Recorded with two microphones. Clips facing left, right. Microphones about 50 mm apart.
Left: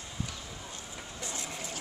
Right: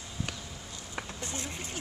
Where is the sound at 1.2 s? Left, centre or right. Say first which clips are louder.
Right 1 dB; right.